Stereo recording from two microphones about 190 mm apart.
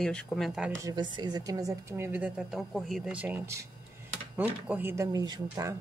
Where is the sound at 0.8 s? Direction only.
20° right (ahead or behind).